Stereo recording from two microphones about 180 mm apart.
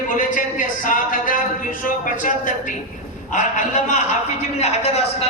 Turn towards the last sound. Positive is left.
turn(degrees=35)  # may be behind; listen again after turning